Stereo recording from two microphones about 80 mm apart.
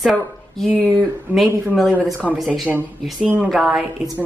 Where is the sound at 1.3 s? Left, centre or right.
Right.